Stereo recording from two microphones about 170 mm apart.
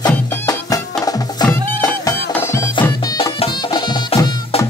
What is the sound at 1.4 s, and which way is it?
Music, 10° left (ahead or behind).